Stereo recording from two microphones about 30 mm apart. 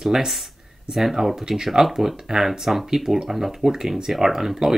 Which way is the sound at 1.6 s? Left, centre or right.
Centre.